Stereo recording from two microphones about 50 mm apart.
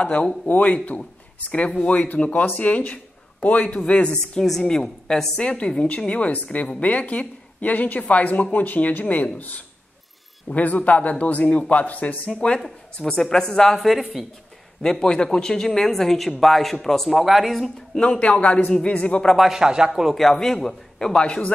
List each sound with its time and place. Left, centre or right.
0.0 s a man's voice: left
5.4 s a man's voice: left
12.6 s speech: centre
13.7 s speech: centre
14.8 s speech: centre
17.9 s a man's voice: centre
19.2 s speech: centre
19.5 s speech: centre
20.2 s speech: centre